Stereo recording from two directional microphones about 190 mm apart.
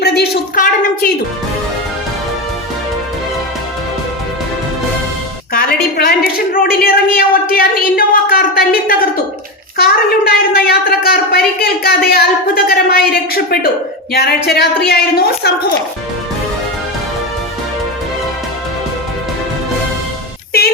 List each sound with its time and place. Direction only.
0.0 s a woman's voice: 60° left (ahead or behind)
5.5 s a woman's voice: 55° left (ahead or behind)